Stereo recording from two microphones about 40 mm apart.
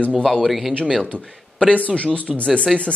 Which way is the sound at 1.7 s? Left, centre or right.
Left.